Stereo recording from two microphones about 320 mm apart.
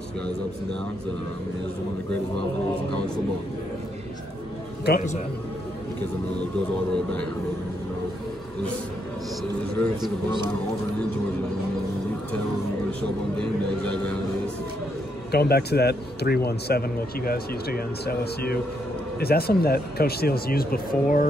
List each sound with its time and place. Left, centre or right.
4.8 s speech: left
6.9 s speech: centre
13.4 s speech: centre
15.3 s speech: left